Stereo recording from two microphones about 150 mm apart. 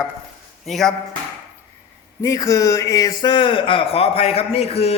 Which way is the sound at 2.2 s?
20° left (ahead or behind).